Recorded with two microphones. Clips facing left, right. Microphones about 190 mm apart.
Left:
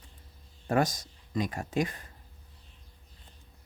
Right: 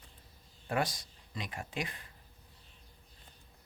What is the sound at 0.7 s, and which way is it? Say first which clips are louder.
Speech: left 6 dB; 45° left (ahead or behind).